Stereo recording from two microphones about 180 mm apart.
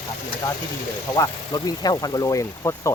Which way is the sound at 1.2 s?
20° left (ahead or behind).